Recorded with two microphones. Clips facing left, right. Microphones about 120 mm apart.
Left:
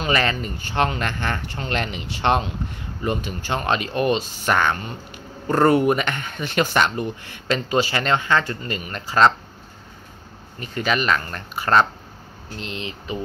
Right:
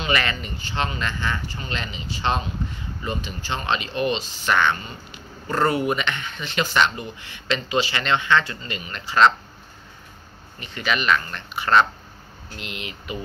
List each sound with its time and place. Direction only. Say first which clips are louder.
0.0 s speech: left 3 dB; 40° left (ahead or behind); by 2.5 s 65° left (ahead or behind)
3.0 s speech: left 5 dB; 55° left (ahead or behind)
10.6 s speech: left 3 dB; 40° left (ahead or behind)